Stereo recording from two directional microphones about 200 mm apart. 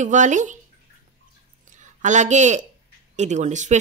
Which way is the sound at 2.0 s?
35° right (ahead or behind).